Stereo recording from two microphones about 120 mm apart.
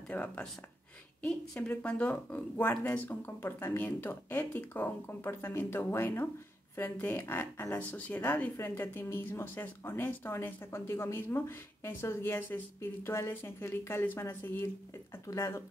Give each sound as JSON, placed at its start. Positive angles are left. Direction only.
{"t": 0.1, "sound": "speech", "side_deg": 10}